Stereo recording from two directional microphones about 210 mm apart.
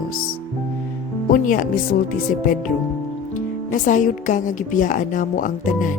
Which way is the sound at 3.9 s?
40° left (ahead or behind).